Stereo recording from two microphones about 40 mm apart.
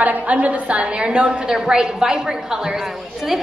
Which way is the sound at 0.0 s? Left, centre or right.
Right.